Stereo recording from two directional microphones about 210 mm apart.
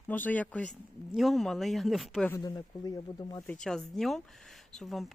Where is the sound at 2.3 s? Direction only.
20° left (ahead or behind).